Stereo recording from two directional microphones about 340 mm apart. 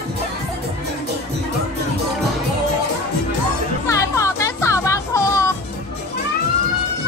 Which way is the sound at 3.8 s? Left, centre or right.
Centre.